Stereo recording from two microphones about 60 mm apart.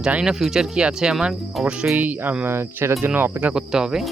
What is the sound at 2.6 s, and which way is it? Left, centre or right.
Speech, right.